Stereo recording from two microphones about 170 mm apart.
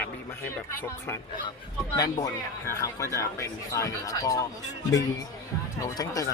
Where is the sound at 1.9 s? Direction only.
25° left (ahead or behind).